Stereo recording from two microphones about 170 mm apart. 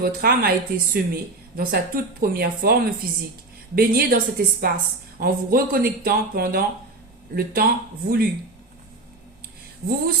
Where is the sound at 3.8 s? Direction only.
60° right (ahead or behind).